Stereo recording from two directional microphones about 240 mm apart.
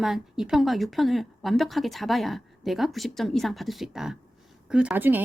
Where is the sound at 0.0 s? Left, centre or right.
Centre.